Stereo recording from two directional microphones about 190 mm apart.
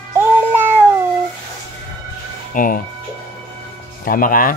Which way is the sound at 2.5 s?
45° left (ahead or behind).